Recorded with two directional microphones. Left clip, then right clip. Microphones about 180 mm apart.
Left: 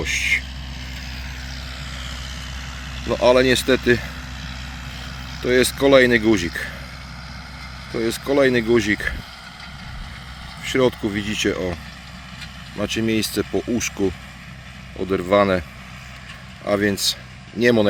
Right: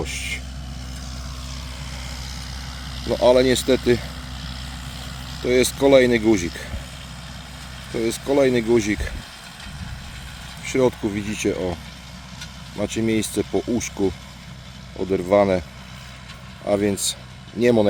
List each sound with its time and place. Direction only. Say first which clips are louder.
0.0 s speech: left 8 dB; 10° right (ahead or behind)
2.0 s vehicle: left 2 dB; 65° right (ahead or behind)
3.2 s speech: left 1 dB; 5° right (ahead or behind)
5.0 s vehicle: even; 50° right (ahead or behind)
5.5 s speech: left 1 dB; 10° right (ahead or behind)
7.9 s speech: left 1 dB; 10° right (ahead or behind)
10.7 s speech: left 1 dB; 5° right (ahead or behind)
16.6 s speech: left 2 dB; 5° right (ahead or behind)